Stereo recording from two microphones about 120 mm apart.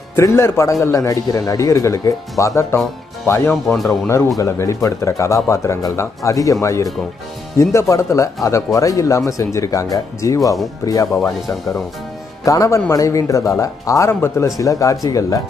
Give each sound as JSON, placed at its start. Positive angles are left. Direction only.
{"t": 0.1, "sound": "a man's voice", "side_deg": 20}
{"t": 3.6, "sound": "speech", "side_deg": 0}
{"t": 4.4, "sound": "a man's voice", "side_deg": 25}
{"t": 12.4, "sound": "a man's voice", "side_deg": 25}